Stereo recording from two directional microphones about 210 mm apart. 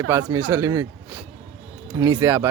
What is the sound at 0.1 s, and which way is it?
Speech, 15° right (ahead or behind).